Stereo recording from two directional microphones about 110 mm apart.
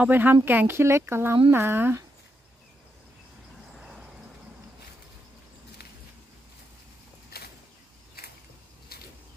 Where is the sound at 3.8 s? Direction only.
5° right (ahead or behind).